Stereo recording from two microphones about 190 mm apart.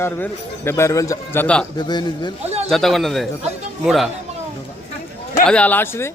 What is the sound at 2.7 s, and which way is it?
Speech, centre (ahead or behind).